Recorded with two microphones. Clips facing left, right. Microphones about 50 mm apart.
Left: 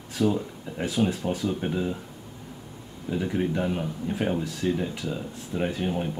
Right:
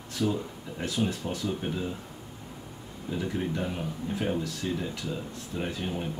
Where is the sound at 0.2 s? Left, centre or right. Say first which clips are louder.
Left 4 dB; centre.